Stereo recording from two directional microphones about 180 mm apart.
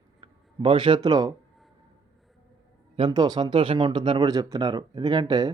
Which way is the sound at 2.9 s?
25° right (ahead or behind).